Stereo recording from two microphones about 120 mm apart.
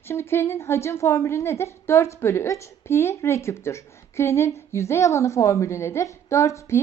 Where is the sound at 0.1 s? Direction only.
20° left (ahead or behind).